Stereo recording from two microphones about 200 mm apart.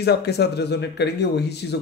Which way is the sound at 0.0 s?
55° left (ahead or behind).